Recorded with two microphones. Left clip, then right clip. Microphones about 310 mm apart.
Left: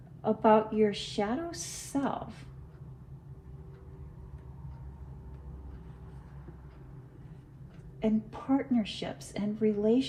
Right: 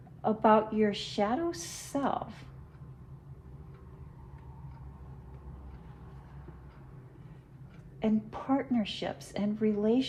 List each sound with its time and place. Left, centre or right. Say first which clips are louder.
0.2 s a woman's voice: even; right
8.0 s a woman's voice: even; right